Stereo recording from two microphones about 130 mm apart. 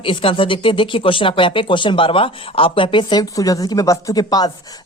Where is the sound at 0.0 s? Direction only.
45° left (ahead or behind).